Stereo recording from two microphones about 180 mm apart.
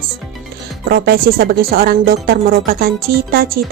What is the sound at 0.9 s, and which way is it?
Speech, 55° right (ahead or behind).